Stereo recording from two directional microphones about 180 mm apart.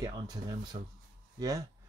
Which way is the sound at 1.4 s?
20° right (ahead or behind).